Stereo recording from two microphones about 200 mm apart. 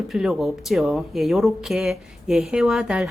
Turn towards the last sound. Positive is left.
turn(degrees=-5)  # may be behind; listen again after turning